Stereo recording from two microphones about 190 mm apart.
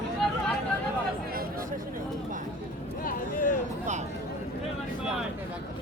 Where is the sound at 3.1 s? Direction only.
45° left (ahead or behind).